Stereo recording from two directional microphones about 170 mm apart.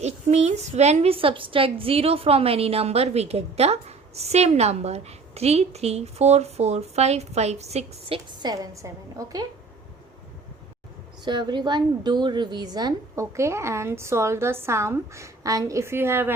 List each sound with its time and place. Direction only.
0.0 s a woman's voice: 40° right (ahead or behind)
8.4 s a woman's voice: 25° right (ahead or behind)
11.3 s a woman's voice: 25° right (ahead or behind)